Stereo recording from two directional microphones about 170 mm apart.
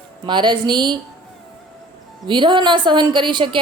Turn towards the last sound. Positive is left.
turn(degrees=-30)  # may be behind; listen again after turning